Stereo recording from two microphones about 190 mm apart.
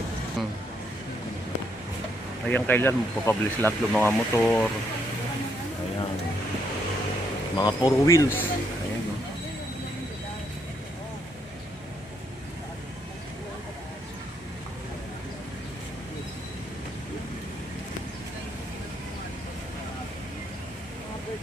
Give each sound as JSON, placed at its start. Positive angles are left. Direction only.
{"t": 0.4, "sound": "speech", "side_deg": 0}
{"t": 2.5, "sound": "speech", "side_deg": 10}
{"t": 7.5, "sound": "speech", "side_deg": 20}